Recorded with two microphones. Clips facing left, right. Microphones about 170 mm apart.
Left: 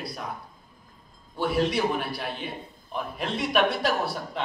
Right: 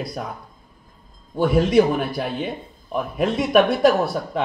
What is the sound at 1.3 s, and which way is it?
A man's voice, 50° right (ahead or behind).